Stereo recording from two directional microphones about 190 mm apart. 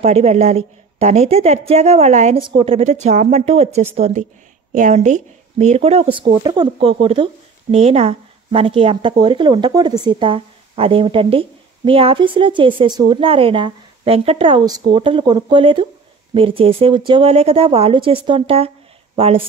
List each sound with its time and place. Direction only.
0.0 s a woman's voice: 35° right (ahead or behind)